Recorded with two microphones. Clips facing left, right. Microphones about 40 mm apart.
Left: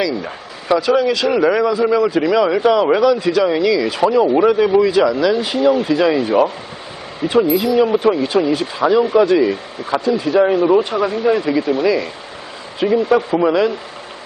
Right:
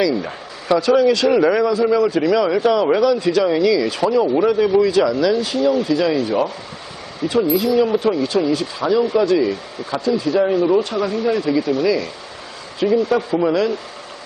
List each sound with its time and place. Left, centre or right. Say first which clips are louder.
0.0 s a man's voice: right 1 dB; centre
4.0 s speech: left 4 dB; centre
7.4 s a man's voice: left 2 dB; centre